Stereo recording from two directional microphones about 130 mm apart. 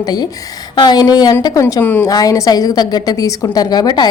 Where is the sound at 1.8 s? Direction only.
15° left (ahead or behind).